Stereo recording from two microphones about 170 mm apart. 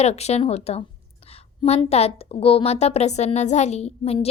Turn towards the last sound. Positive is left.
turn(degrees=35)  # may be behind; listen again after turning